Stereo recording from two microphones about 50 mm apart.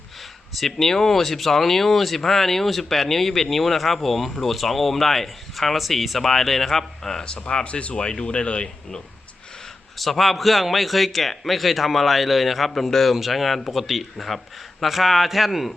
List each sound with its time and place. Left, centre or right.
0.5 s speech: centre
7.4 s speech: left
10.0 s speech: centre